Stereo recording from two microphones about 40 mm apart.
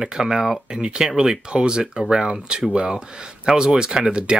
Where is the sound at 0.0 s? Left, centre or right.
Centre.